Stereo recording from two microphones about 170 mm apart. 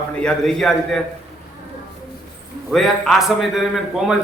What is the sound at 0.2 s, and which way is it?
Speech, 5° left (ahead or behind).